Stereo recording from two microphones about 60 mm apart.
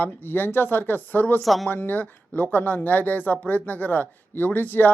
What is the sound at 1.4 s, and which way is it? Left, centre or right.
Speech, centre.